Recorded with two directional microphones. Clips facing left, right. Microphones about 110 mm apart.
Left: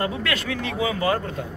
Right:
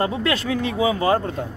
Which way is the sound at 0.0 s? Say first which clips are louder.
Right 4 dB; 25° right (ahead or behind).